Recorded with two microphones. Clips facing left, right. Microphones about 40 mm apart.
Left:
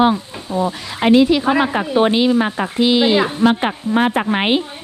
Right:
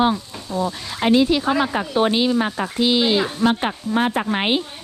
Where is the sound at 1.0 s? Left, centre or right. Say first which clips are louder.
Left 4 dB; left.